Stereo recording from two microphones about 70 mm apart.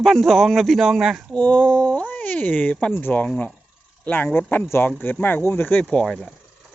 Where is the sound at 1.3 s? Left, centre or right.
Centre.